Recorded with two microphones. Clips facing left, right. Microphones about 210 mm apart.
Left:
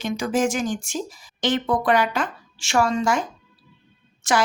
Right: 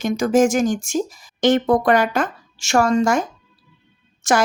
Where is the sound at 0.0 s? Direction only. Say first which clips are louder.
Right 6 dB; 45° right (ahead or behind).